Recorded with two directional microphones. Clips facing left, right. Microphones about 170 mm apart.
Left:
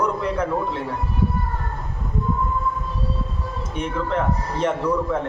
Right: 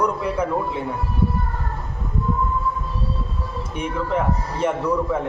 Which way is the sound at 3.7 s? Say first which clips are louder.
Right 1 dB; 10° right (ahead or behind).